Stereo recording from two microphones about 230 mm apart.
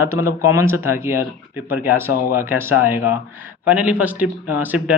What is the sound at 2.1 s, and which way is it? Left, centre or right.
Speech, left.